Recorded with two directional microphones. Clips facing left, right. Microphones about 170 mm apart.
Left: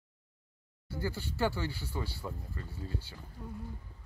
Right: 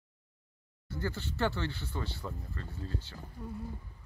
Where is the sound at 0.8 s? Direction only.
10° left (ahead or behind).